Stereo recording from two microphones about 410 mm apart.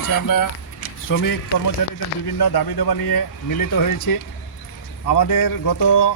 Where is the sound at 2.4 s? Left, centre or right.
Left.